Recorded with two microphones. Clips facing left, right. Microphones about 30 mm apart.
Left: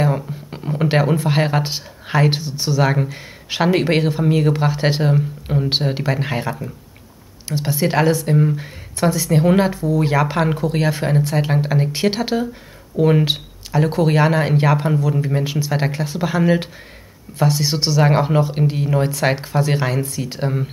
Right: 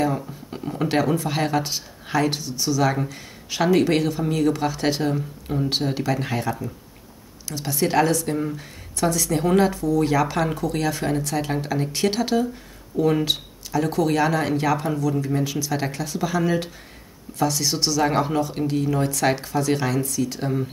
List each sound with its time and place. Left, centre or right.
0.0 s speech: left